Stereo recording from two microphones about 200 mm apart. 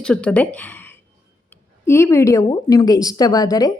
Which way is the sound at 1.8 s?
15° left (ahead or behind).